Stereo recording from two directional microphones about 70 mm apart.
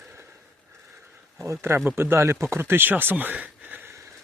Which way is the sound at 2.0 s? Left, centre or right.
Right.